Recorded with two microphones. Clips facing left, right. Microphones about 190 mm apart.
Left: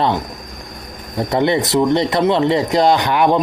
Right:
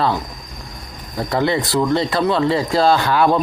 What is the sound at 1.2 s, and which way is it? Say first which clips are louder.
Speech: left 3 dB; 20° left (ahead or behind).